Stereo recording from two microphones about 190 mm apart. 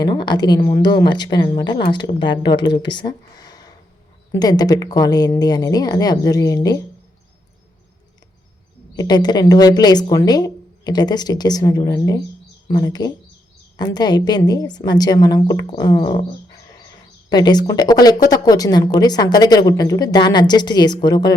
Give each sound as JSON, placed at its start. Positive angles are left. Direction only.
{"t": 0.0, "sound": "a woman's voice", "side_deg": 25}
{"t": 9.0, "sound": "a woman's voice", "side_deg": 20}